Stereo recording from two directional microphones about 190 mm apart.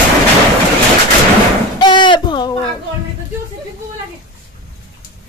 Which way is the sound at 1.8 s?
25° left (ahead or behind).